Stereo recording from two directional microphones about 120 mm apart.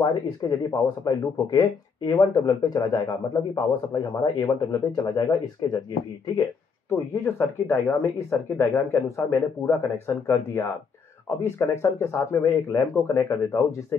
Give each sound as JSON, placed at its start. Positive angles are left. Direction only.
{"t": 0.0, "sound": "speech", "side_deg": 30}
{"t": 6.9, "sound": "speech", "side_deg": 20}